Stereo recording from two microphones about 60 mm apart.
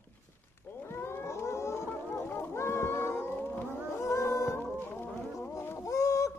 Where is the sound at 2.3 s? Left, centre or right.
Left.